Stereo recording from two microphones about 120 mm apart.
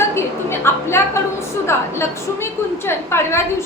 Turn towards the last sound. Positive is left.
turn(degrees=20)  # may be behind; listen again after turning